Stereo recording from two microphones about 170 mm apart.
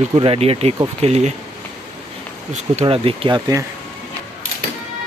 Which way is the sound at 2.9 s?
35° right (ahead or behind).